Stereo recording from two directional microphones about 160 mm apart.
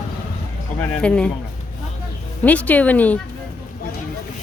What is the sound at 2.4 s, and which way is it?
Speech, 10° left (ahead or behind).